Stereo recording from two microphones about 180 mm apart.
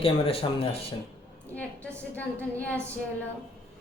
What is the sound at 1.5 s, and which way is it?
A woman's voice, 5° left (ahead or behind).